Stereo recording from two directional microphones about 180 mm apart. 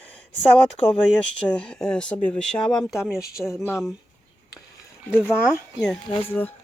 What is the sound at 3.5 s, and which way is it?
Speech, 15° left (ahead or behind).